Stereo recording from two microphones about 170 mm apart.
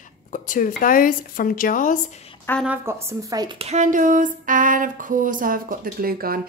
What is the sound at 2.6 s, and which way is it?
Speech, 10° right (ahead or behind).